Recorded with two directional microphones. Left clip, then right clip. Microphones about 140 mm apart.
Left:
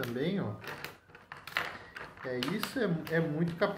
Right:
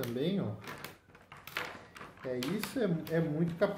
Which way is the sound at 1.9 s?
20° right (ahead or behind).